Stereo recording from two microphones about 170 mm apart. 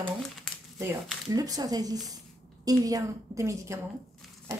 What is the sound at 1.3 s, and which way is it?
A woman's voice, 20° right (ahead or behind).